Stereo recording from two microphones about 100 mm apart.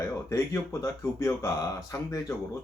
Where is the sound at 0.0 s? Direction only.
30° left (ahead or behind).